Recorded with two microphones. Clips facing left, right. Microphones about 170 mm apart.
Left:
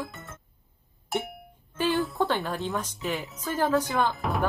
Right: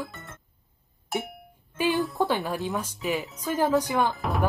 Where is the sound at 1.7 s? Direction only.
15° right (ahead or behind).